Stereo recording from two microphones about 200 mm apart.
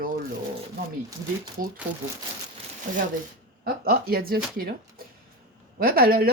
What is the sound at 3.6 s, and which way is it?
Speech, 50° right (ahead or behind).